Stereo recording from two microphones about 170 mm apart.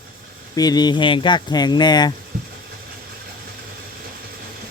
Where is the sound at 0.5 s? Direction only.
25° left (ahead or behind).